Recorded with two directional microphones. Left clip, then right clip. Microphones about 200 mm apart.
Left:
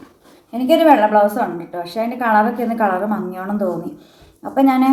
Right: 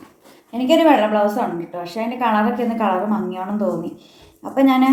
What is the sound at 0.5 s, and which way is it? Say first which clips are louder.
A woman's voice: left 2 dB; 20° left (ahead or behind).